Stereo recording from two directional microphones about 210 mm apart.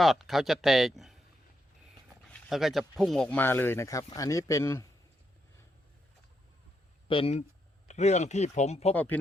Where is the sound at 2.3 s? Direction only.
Centre (ahead or behind).